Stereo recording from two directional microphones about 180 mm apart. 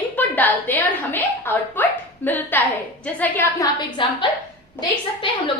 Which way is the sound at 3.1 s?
10° left (ahead or behind).